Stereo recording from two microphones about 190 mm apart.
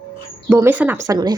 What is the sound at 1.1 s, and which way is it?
Speech, 20° right (ahead or behind).